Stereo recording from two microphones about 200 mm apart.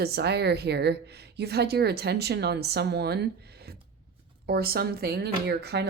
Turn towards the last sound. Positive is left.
turn(degrees=-55)  # may be behind; listen again after turning